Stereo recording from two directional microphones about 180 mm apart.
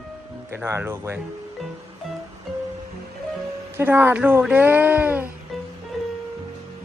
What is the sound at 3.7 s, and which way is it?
Speech, 10° right (ahead or behind).